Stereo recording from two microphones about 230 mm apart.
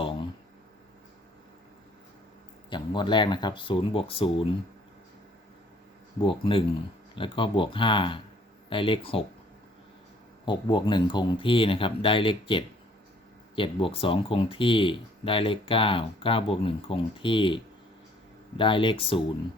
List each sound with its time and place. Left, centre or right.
2.6 s speech: left
6.2 s speech: left
10.4 s speech: centre